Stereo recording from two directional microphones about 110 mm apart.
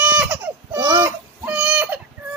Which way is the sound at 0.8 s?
30° right (ahead or behind).